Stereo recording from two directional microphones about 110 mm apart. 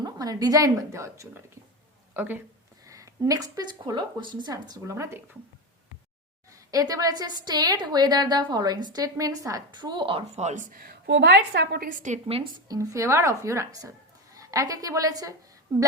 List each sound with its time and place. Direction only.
0.0 s a woman's voice: 35° right (ahead or behind); by 2.4 s 20° right (ahead or behind)
2.8 s a woman's voice: 30° right (ahead or behind)
6.5 s a woman's voice: 30° right (ahead or behind); by 10.2 s 50° right (ahead or behind)
10.3 s speech: 90° right
12.0 s a woman's voice: 75° right (ahead or behind)
12.6 s a woman's voice: 35° right (ahead or behind)